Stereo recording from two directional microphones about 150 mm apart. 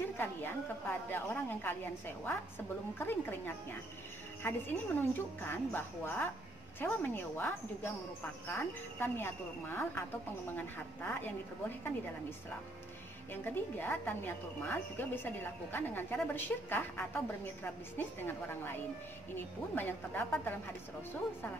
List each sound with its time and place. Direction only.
0.2 s a woman's voice: 15° left (ahead or behind)
3.0 s a woman's voice: 15° left (ahead or behind)
13.3 s a woman's voice: 15° left (ahead or behind)